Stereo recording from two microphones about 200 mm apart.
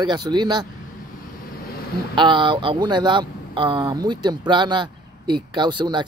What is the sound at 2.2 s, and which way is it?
Speech, 25° right (ahead or behind).